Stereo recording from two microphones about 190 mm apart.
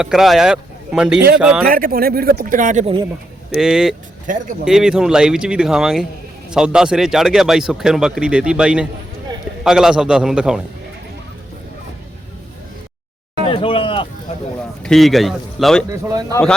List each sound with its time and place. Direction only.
0.0 s speech: centre (ahead or behind)
1.6 s speech: 50° right (ahead or behind)
2.8 s speech: 25° right (ahead or behind)
3.5 s speech: 5° right (ahead or behind)
4.3 s speech: 45° right (ahead or behind)
4.6 s speech: 5° right (ahead or behind)
13.5 s a sound: 30° left (ahead or behind)
14.8 s speech: centre (ahead or behind)
15.9 s speech: 15° right (ahead or behind)
16.3 s speech: 5° left (ahead or behind)